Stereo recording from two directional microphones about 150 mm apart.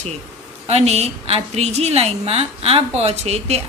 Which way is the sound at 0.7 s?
45° right (ahead or behind).